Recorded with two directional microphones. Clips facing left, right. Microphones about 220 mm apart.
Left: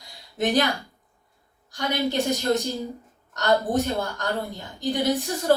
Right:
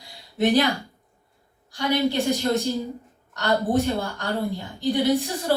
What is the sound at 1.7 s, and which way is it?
A woman's voice, 45° left (ahead or behind).